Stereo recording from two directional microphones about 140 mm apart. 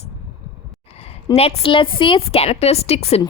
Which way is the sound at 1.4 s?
45° left (ahead or behind).